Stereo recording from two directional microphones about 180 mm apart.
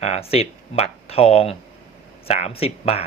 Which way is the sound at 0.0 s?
35° left (ahead or behind).